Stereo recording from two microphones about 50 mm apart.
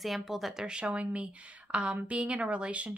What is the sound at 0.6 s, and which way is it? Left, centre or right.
Speech, right.